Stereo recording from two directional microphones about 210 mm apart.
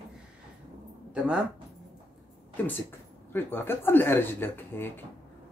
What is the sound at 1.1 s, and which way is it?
Speech, 5° right (ahead or behind).